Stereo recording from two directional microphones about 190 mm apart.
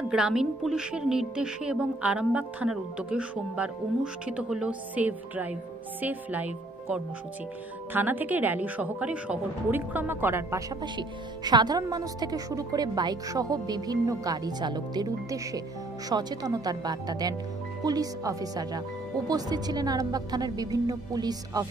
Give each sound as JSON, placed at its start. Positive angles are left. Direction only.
{"t": 0.1, "sound": "a woman's voice", "side_deg": -5}